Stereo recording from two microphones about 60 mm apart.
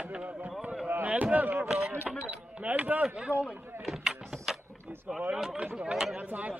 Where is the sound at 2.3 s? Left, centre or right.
Right.